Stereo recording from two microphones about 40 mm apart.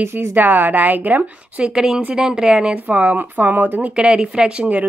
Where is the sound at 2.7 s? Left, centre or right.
Right.